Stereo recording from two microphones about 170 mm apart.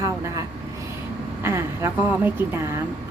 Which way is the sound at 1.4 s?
15° right (ahead or behind).